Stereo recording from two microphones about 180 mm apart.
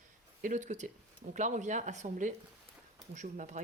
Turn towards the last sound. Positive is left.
turn(degrees=-45)  # may be behind; listen again after turning